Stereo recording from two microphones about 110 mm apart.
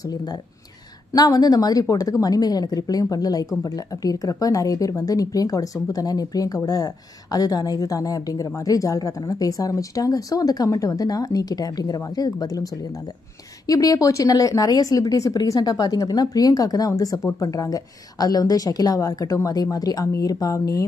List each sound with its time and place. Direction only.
0.0 s speech: 35° left (ahead or behind)